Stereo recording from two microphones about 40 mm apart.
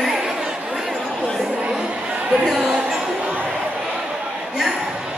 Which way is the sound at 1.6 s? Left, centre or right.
Right.